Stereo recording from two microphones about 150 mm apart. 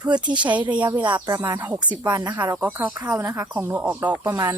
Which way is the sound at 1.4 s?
20° right (ahead or behind).